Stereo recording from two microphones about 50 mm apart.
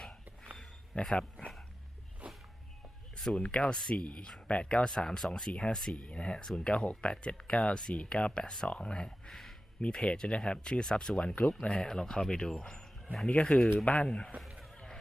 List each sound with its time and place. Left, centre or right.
0.5 s a sound: centre
2.2 s a sound: right
3.3 s speech: left
5.5 s speech: left
5.7 s speech: centre
6.0 s speech: left
6.4 s speech: centre
13.2 s speech: left